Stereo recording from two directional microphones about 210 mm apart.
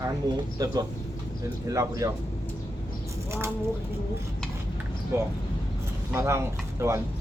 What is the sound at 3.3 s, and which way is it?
Speech, 10° right (ahead or behind).